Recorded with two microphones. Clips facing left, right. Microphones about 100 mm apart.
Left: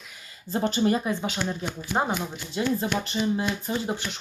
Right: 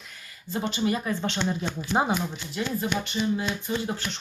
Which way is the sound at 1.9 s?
10° right (ahead or behind).